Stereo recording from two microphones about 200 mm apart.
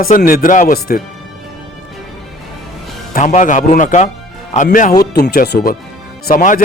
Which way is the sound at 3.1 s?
40° left (ahead or behind).